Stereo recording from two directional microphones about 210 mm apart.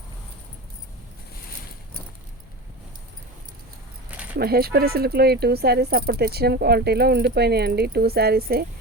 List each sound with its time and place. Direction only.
4.4 s speech: 45° right (ahead or behind)